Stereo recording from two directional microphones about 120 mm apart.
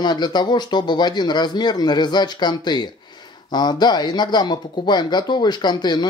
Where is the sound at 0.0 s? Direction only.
35° left (ahead or behind).